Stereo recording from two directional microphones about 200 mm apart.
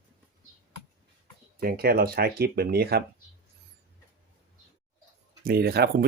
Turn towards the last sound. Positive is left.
turn(degrees=-50)  # may be behind; listen again after turning